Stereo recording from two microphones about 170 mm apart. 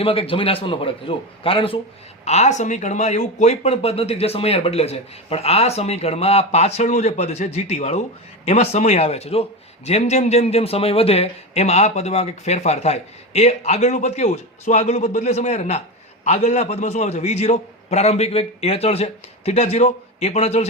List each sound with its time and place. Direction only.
0.0 s a man's voice: 35° left (ahead or behind)